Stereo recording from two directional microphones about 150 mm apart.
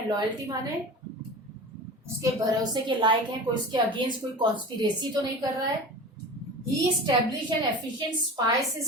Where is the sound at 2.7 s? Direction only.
30° right (ahead or behind).